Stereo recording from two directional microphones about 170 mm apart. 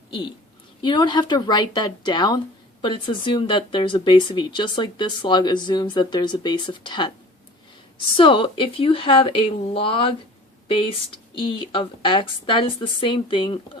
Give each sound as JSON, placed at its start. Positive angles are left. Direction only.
{"t": 0.8, "sound": "speech", "side_deg": 25}